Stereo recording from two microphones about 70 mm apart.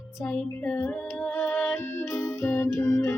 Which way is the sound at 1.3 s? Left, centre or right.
Left.